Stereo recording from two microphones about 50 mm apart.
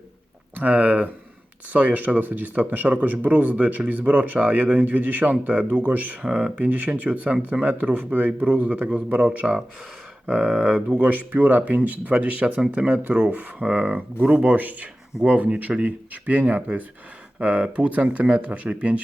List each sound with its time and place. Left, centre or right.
0.5 s speech: right
6.2 s speech: right
10.2 s a sound: centre
10.9 s speech: right